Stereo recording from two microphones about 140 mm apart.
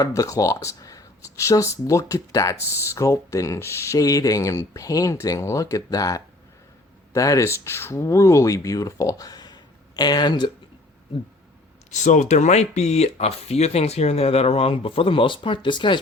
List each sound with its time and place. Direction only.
0.0 s speech: 25° left (ahead or behind)
11.9 s speech: 60° left (ahead or behind); by 16.0 s 35° left (ahead or behind)